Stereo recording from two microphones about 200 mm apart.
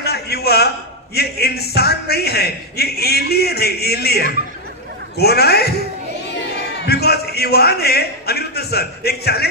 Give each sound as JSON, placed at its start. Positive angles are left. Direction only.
{"t": 0.0, "sound": "a sound", "side_deg": 55}
{"t": 1.1, "sound": "a man's voice", "side_deg": 55}
{"t": 6.9, "sound": "a man's voice", "side_deg": 55}